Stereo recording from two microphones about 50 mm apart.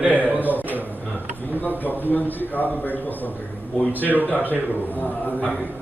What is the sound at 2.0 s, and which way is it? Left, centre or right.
A man's voice, left.